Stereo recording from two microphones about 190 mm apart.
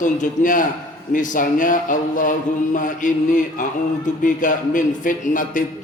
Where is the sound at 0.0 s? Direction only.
45° left (ahead or behind).